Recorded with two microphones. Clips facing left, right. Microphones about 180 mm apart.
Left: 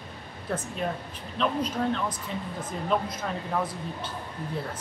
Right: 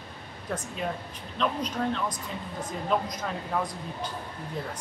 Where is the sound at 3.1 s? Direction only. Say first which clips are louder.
Left 1 dB; 5° left (ahead or behind).